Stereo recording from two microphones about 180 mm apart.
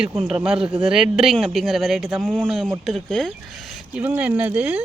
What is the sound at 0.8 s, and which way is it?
Speech, 5° right (ahead or behind).